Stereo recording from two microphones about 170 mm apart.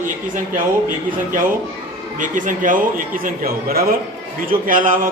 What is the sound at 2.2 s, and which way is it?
A man's voice, 50° right (ahead or behind).